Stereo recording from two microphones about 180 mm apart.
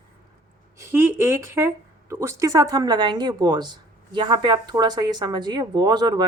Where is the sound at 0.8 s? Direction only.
10° right (ahead or behind).